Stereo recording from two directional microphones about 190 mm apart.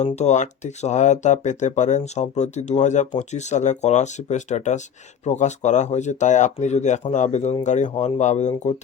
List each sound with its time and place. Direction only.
0.0 s speech: 35° left (ahead or behind)